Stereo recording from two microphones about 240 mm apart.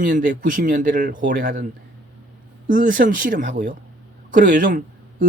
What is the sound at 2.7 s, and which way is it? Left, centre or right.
Speech, right.